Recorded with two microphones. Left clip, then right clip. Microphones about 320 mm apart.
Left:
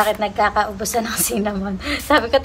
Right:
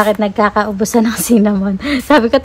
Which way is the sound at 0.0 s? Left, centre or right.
Centre.